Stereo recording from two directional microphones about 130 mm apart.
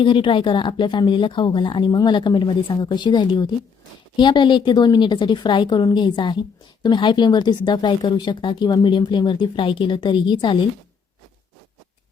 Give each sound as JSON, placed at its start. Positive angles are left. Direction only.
{"t": 0.0, "sound": "speech", "side_deg": 40}